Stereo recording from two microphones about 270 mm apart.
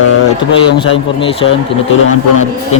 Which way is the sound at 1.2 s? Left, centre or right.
Left.